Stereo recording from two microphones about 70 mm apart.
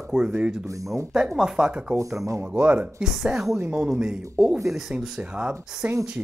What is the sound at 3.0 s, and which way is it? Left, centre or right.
Speech, centre.